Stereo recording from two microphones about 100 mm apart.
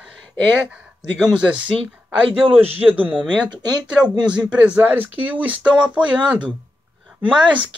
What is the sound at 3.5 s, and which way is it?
Speech, 45° right (ahead or behind).